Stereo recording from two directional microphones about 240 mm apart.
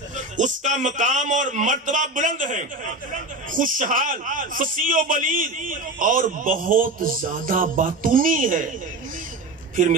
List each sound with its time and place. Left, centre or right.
0.4 s a man's voice: right